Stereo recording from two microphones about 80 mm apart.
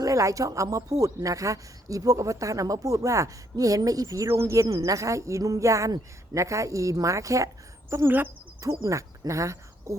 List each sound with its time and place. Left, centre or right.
0.0 s speech: right
4.6 s a woman's voice: right